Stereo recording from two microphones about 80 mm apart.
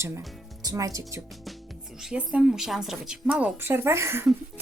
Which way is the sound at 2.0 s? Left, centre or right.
Centre.